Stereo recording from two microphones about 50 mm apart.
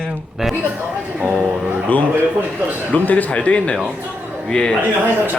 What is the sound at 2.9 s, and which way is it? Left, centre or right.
A man's voice, left.